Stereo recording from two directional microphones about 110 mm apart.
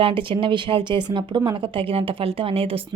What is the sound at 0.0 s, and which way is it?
Speech, 50° right (ahead or behind).